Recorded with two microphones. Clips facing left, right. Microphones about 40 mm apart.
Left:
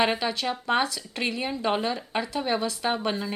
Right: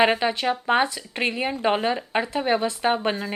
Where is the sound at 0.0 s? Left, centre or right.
Right.